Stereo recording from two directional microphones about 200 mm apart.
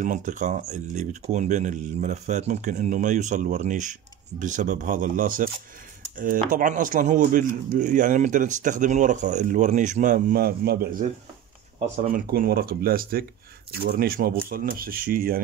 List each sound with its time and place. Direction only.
0.0 s speech: 40° right (ahead or behind)
11.8 s speech: 35° right (ahead or behind)
12.3 s speech: 50° right (ahead or behind)